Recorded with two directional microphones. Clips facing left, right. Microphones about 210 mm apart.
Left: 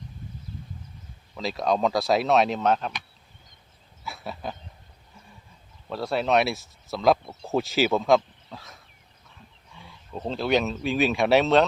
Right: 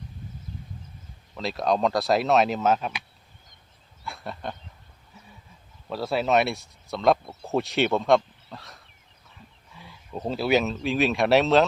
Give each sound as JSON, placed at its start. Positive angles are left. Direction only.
{"t": 1.4, "sound": "speech", "side_deg": 0}
{"t": 4.0, "sound": "a sound", "side_deg": 5}
{"t": 5.9, "sound": "speech", "side_deg": 0}